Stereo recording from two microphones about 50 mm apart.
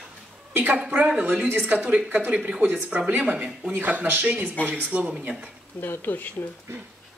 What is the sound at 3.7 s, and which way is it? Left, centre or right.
A woman's voice, right.